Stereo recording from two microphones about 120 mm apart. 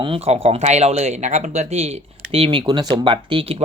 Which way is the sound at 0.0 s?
50° right (ahead or behind).